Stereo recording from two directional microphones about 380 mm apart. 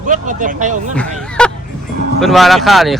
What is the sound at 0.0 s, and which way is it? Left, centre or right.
Speech, centre.